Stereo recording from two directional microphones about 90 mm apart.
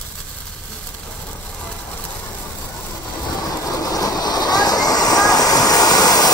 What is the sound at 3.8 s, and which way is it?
Train, 45° left (ahead or behind).